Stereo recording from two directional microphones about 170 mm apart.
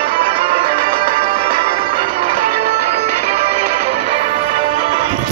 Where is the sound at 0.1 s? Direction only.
35° right (ahead or behind).